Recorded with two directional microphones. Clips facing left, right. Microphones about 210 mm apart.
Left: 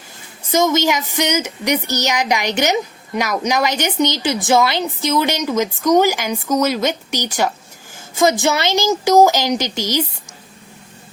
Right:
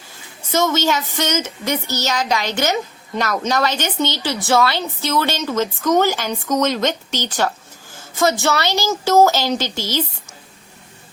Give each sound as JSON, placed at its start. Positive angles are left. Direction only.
{"t": 0.5, "sound": "a woman's voice", "side_deg": 15}